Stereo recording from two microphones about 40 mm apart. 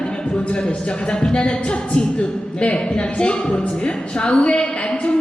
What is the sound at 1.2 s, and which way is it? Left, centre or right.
Speech, left.